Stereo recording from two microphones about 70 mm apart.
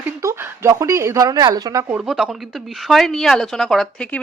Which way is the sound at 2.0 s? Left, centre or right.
Centre.